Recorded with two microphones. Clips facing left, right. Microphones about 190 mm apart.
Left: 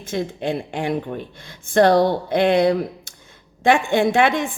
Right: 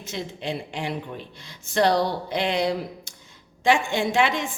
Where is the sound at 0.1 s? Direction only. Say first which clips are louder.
Left 7 dB; 50° left (ahead or behind).